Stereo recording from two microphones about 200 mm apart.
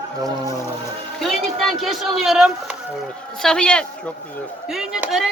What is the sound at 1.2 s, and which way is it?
A woman's voice, centre (ahead or behind).